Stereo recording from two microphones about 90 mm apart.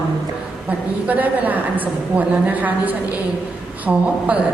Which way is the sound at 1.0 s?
15° right (ahead or behind).